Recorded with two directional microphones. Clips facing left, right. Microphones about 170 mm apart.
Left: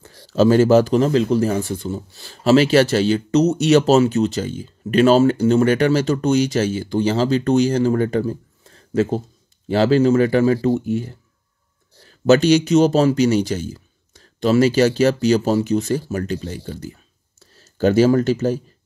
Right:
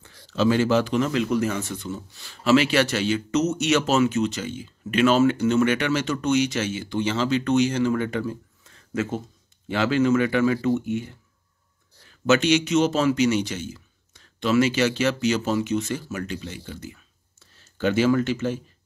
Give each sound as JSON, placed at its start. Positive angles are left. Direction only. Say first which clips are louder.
{"t": 0.0, "sound": "speech", "louder": "left 6 dB", "side_deg": 35}